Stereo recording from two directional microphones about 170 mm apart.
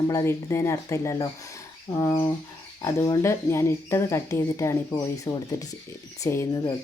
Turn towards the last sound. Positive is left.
turn(degrees=20)  # may be behind; listen again after turning